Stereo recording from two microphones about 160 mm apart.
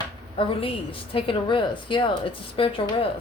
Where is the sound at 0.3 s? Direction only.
35° left (ahead or behind).